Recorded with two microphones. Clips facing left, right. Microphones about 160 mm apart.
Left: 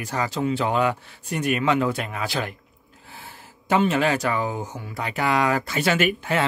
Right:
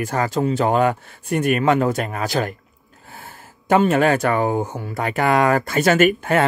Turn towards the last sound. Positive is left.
turn(degrees=-50)  # may be behind; listen again after turning